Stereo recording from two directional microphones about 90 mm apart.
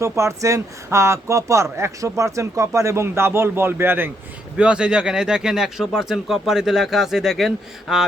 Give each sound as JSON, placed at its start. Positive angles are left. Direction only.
{"t": 0.0, "sound": "speech", "side_deg": -30}
{"t": 4.5, "sound": "speech", "side_deg": -10}